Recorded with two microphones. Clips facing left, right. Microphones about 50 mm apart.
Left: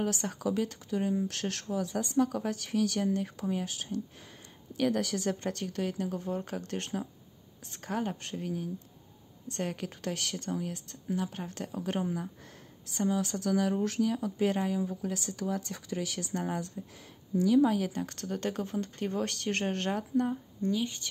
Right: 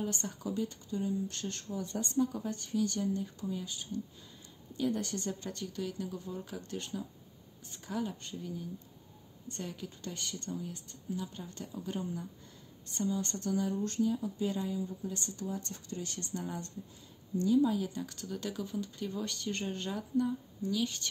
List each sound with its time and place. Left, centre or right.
0.0 s speech: left
5.4 s a woman's voice: left
8.2 s speech: left
12.9 s speech: left
16.3 s speech: left
20.7 s speech: left